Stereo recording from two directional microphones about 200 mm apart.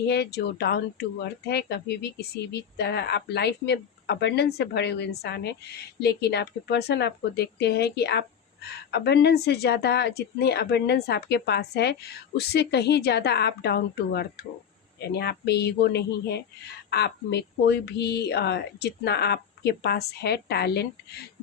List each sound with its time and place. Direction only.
0.1 s speech: 55° left (ahead or behind)